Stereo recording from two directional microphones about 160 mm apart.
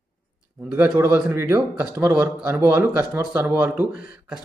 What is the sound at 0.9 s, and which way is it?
A man's voice, 10° right (ahead or behind).